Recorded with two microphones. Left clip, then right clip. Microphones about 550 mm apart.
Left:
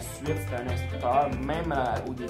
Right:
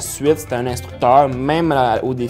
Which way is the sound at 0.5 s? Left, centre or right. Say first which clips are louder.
Right 12 dB; right.